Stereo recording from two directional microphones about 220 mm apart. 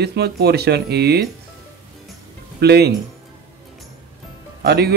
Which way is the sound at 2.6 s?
45° right (ahead or behind).